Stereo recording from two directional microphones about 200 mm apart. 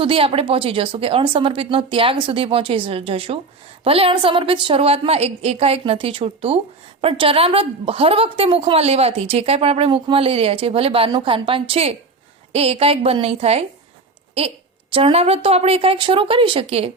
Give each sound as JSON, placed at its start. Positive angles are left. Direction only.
{"t": 0.0, "sound": "a woman's voice", "side_deg": -30}